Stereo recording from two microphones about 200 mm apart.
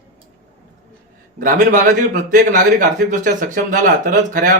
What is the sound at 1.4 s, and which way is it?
A man's voice, 40° right (ahead or behind).